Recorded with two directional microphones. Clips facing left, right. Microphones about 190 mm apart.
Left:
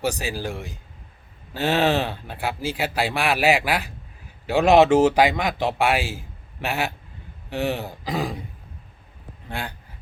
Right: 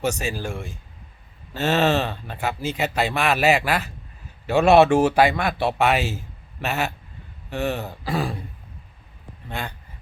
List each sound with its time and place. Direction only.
0.0 s speech: 10° left (ahead or behind)
9.5 s speech: 10° left (ahead or behind)